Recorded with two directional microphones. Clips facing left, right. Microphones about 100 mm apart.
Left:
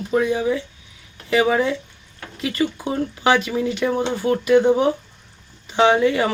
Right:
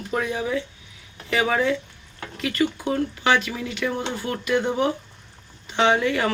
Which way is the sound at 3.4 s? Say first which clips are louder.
Left 6 dB; 25° left (ahead or behind).